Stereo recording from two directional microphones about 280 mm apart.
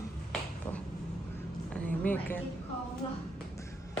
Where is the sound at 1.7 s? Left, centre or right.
Centre.